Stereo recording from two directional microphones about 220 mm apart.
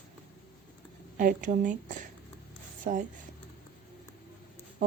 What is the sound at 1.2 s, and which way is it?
Speech, 35° right (ahead or behind).